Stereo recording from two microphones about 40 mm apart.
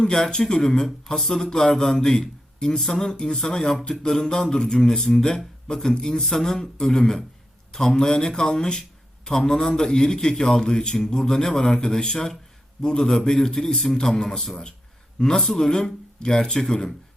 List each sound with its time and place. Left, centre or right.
0.0 s a man's voice: centre
15.7 s a man's voice: centre